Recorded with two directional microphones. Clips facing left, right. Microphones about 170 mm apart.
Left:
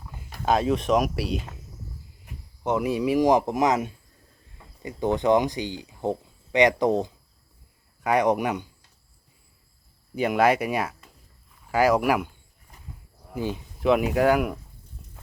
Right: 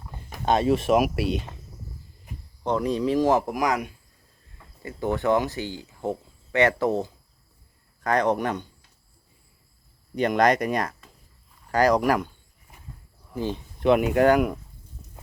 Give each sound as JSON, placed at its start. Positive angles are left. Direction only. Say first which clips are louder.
{"t": 0.4, "sound": "speech", "louder": "right 1 dB", "side_deg": 0}
{"t": 10.2, "sound": "speech", "louder": "even", "side_deg": 5}
{"t": 13.3, "sound": "speech", "louder": "even", "side_deg": 10}